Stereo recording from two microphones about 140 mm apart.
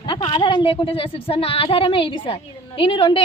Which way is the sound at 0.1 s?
30° left (ahead or behind).